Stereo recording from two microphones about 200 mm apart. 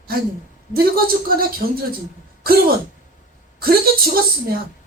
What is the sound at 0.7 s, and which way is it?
Speech, 50° right (ahead or behind).